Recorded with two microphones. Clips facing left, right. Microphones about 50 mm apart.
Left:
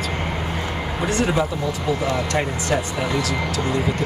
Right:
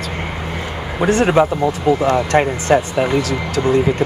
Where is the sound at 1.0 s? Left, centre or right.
Right.